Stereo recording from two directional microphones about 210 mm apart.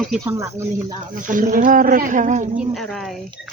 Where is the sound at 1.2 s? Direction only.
40° right (ahead or behind).